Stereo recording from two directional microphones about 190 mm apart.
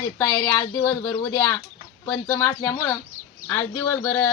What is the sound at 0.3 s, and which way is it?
Speech, 10° left (ahead or behind).